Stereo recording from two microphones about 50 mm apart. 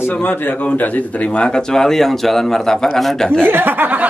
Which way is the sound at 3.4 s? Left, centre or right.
Right.